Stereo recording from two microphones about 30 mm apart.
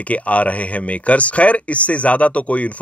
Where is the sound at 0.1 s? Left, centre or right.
Left.